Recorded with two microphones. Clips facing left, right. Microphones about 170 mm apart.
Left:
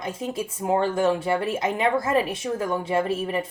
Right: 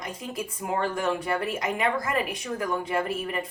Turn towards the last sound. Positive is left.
turn(degrees=25)  # may be behind; listen again after turning